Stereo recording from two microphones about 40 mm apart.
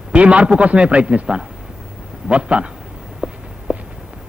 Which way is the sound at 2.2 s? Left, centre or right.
Right.